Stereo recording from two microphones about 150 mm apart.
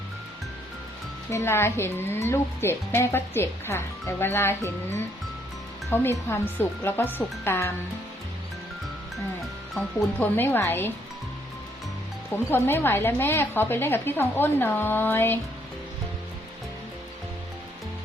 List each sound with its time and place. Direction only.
1.3 s speech: 15° left (ahead or behind)
9.8 s speech: 15° left (ahead or behind)
12.5 s speech: 15° left (ahead or behind)